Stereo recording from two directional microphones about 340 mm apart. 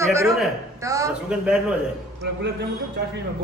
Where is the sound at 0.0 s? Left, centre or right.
Centre.